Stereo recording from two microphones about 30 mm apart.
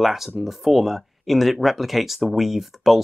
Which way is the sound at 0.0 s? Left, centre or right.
Centre.